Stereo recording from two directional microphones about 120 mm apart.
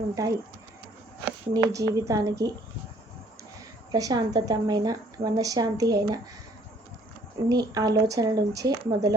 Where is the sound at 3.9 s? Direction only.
30° right (ahead or behind).